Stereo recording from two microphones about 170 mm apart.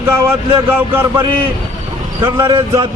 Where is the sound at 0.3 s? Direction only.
15° right (ahead or behind).